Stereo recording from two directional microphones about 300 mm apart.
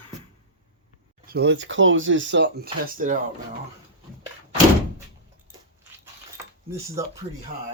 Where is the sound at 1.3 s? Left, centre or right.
Right.